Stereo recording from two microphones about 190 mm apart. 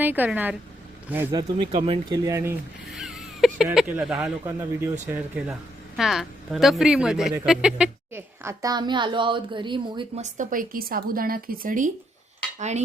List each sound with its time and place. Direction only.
0.0 s speech: 10° right (ahead or behind)
1.7 s a woman's voice: 30° right (ahead or behind)
2.9 s a woman's voice: centre (ahead or behind); by 10.1 s 25° right (ahead or behind)
10.2 s speech: 40° right (ahead or behind)
12.5 s cutlery: 35° right (ahead or behind)